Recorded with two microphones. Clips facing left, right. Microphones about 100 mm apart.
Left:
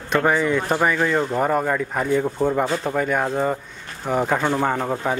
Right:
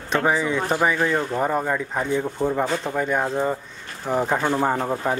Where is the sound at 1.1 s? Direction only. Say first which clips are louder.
Left 2 dB; 5° left (ahead or behind).